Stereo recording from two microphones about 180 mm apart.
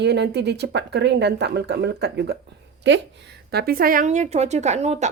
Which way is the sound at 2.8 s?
80° right.